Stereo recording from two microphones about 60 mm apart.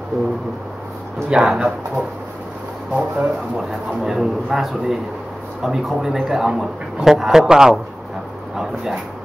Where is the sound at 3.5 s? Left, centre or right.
Centre.